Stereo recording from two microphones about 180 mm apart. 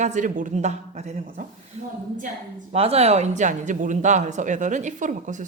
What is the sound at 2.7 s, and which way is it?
Speech, 35° right (ahead or behind).